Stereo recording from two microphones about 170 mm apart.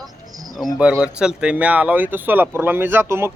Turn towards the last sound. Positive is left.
turn(degrees=-15)  # may be behind; listen again after turning